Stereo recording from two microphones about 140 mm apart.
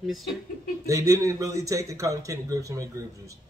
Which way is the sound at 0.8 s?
20° right (ahead or behind).